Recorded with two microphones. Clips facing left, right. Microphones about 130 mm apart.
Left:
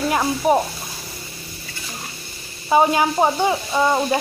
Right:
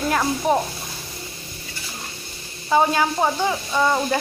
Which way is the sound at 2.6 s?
15° left (ahead or behind).